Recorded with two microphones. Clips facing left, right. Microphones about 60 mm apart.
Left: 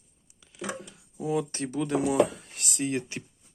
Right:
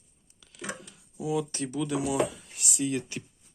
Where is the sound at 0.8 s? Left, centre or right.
Left.